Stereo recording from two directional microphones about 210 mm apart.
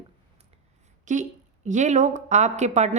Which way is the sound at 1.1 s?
35° right (ahead or behind).